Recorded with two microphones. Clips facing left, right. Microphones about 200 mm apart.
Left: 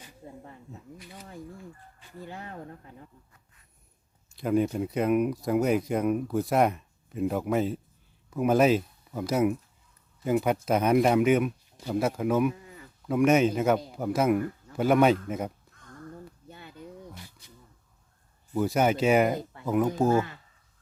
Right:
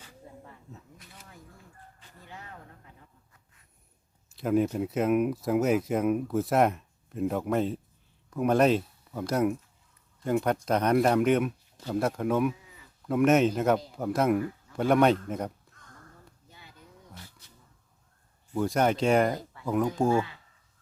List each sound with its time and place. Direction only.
0.0 s snake: 15° left (ahead or behind)
4.4 s speech: centre (ahead or behind)
12.6 s sheep: 55° left (ahead or behind)
13.1 s speech: centre (ahead or behind)
16.5 s a sound: 55° left (ahead or behind)
17.2 s a sound: 15° left (ahead or behind)
18.5 s speech: 5° left (ahead or behind)